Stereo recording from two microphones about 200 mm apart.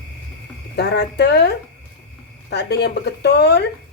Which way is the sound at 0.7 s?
55° left (ahead or behind).